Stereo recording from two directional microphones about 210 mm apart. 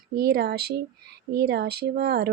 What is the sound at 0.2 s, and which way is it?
Speech, 50° right (ahead or behind).